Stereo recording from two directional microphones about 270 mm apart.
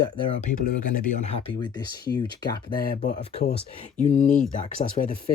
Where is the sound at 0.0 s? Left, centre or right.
Centre.